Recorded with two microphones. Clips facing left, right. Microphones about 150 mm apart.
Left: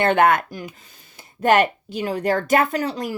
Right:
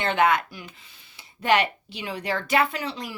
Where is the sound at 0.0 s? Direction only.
55° left (ahead or behind).